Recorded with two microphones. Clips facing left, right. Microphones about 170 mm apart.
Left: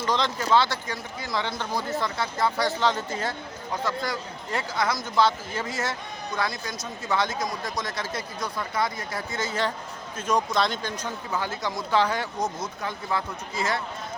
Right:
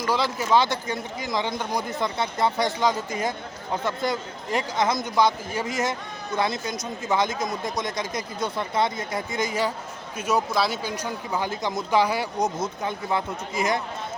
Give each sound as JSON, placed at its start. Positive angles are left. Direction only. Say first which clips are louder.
{"t": 0.0, "sound": "speech", "louder": "right 1 dB", "side_deg": -10}